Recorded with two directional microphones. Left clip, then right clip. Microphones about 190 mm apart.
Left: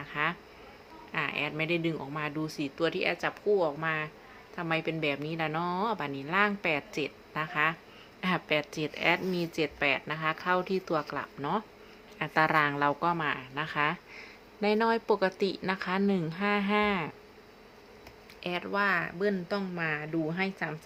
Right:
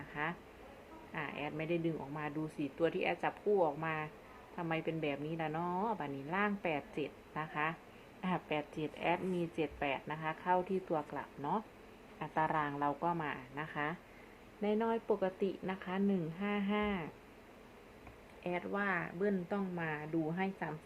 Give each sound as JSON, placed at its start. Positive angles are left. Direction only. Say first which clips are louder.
{"t": 0.1, "sound": "bee", "louder": "left 9 dB", "side_deg": 30}
{"t": 1.1, "sound": "a woman's voice", "louder": "left 10 dB", "side_deg": 35}
{"t": 18.4, "sound": "a woman's voice", "louder": "left 8 dB", "side_deg": 25}